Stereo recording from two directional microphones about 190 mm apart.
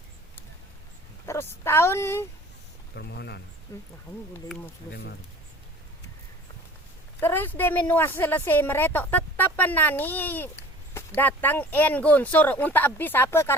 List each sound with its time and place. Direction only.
1.3 s a woman's voice: 15° left (ahead or behind)
2.9 s speech: 60° left (ahead or behind)
4.9 s speech: 60° left (ahead or behind)
7.2 s a woman's voice: 10° left (ahead or behind)